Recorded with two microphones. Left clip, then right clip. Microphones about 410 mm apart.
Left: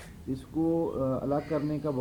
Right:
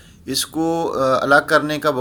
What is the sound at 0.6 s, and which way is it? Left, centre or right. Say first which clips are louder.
A man's voice: right 8 dB; centre.